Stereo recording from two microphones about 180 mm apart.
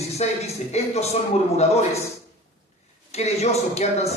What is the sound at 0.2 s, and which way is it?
A man's voice, 35° left (ahead or behind).